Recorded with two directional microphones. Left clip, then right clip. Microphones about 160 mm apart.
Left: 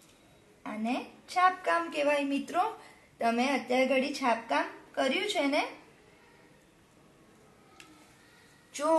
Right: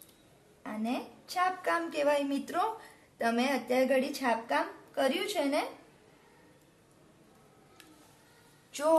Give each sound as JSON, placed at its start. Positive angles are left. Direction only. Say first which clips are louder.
{"t": 0.7, "sound": "a woman's voice", "louder": "left 2 dB", "side_deg": -20}